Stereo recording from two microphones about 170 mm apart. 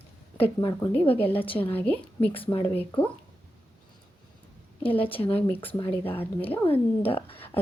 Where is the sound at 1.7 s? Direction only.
10° left (ahead or behind).